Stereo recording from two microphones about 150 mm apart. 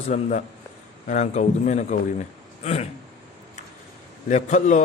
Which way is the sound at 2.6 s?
45° left (ahead or behind).